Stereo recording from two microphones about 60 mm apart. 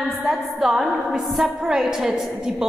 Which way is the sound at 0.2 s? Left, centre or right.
Centre.